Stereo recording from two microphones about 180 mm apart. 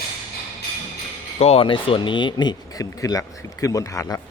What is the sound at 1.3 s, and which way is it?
Speech, 35° left (ahead or behind).